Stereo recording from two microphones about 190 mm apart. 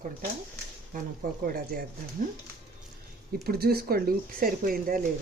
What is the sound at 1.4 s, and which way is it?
Speech, 50° right (ahead or behind).